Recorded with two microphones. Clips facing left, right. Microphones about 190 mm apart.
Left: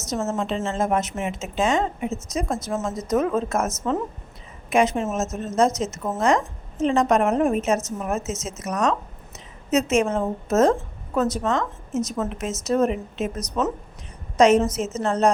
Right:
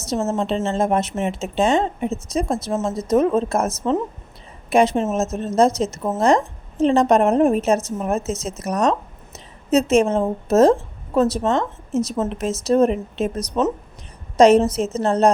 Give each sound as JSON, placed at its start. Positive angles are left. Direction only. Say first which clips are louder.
{"t": 0.3, "sound": "a woman's voice", "louder": "right 4 dB", "side_deg": -35}